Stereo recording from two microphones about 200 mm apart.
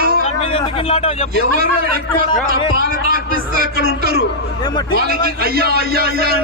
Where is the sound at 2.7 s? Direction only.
45° right (ahead or behind).